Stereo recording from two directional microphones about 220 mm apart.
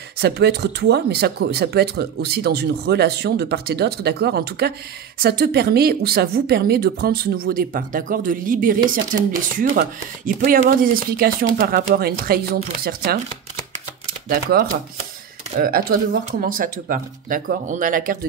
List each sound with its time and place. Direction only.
0.2 s speech: 50° right (ahead or behind)
14.3 s speech: 45° right (ahead or behind)